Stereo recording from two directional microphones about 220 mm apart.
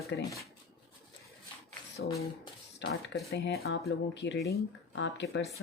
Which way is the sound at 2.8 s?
55° left (ahead or behind).